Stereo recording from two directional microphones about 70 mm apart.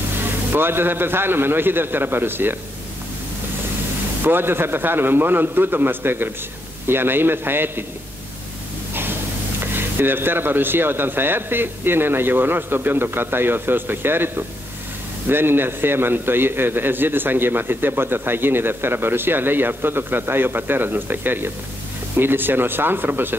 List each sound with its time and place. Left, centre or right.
0.5 s a man's voice: right
4.2 s a man's voice: right
9.8 s a man's voice: right